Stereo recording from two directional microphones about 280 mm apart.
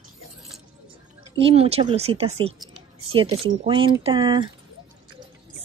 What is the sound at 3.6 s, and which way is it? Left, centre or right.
Speech, centre.